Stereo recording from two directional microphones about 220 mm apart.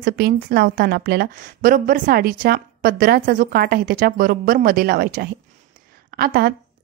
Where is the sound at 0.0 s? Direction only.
45° right (ahead or behind).